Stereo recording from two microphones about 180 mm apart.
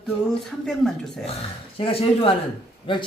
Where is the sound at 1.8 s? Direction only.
30° left (ahead or behind).